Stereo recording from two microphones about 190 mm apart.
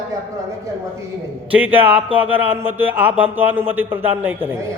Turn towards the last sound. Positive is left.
turn(degrees=-10)  # may be behind; listen again after turning